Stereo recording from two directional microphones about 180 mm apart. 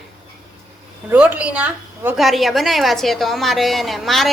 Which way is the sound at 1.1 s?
5° right (ahead or behind).